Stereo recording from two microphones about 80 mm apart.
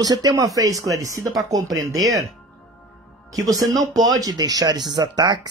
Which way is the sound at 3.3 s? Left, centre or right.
Right.